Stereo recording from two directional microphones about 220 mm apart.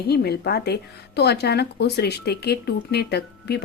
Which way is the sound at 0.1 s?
45° left (ahead or behind).